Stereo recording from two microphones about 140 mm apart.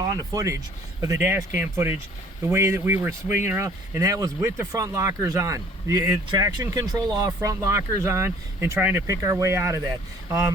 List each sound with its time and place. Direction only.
0.0 s speech: 25° right (ahead or behind)